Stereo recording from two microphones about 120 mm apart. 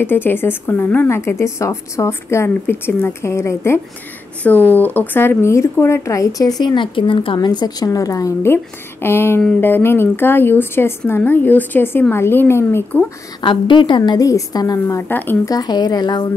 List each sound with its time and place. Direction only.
0.0 s a woman's voice: 15° left (ahead or behind); by 7.3 s 45° left (ahead or behind)
7.3 s a woman's voice: 35° left (ahead or behind); by 13.0 s 20° left (ahead or behind)
13.4 s a woman's voice: 40° left (ahead or behind)
15.0 s a woman's voice: 15° left (ahead or behind)
15.4 s a woman's voice: 30° left (ahead or behind)